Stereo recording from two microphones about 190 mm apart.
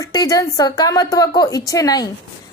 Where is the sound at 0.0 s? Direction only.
20° left (ahead or behind).